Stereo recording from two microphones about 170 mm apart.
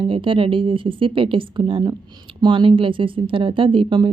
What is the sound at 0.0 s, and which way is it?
A woman's voice, 30° right (ahead or behind).